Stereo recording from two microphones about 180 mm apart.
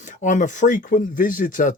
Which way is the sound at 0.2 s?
45° left (ahead or behind).